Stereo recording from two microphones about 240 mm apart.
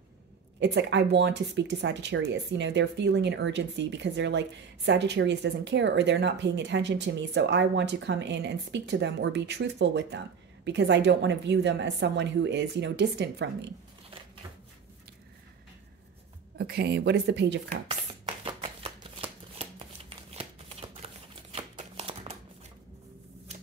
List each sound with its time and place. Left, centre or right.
0.6 s speech: right
16.5 s speech: right
17.8 s shuffling cards: right
20.3 s a sound: right